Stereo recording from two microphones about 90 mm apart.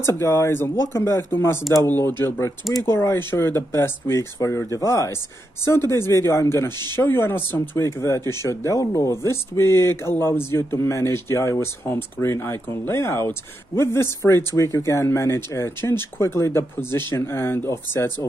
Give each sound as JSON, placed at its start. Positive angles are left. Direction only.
{"t": 0.0, "sound": "speech", "side_deg": 30}